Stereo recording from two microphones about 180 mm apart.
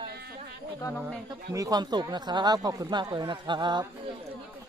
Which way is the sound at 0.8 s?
15° left (ahead or behind).